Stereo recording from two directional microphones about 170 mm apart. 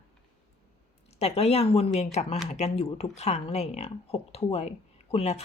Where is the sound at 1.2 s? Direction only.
40° left (ahead or behind).